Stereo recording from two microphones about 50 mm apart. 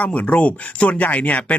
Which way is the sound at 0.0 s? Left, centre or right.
Left.